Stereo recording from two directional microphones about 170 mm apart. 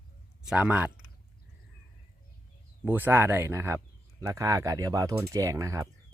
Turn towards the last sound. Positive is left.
turn(degrees=-20)  # may be behind; listen again after turning